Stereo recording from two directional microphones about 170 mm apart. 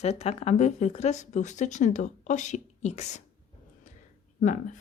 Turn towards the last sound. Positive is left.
turn(degrees=50)  # may be behind; listen again after turning